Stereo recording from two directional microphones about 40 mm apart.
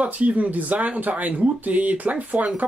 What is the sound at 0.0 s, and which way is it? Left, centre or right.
Speech, right.